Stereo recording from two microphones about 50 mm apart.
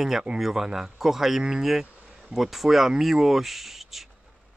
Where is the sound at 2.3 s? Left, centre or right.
Centre.